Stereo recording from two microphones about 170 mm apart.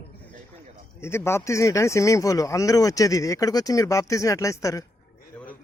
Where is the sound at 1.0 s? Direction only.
15° left (ahead or behind).